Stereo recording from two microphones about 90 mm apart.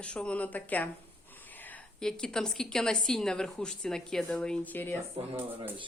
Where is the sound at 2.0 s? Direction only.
5° left (ahead or behind).